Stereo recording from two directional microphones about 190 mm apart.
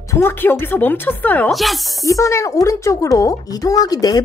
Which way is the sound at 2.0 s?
15° left (ahead or behind).